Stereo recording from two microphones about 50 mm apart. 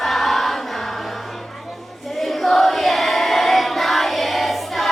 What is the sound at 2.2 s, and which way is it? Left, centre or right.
Choir, centre.